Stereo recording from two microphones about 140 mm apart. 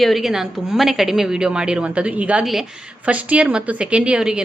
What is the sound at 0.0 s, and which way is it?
A woman's voice, centre (ahead or behind).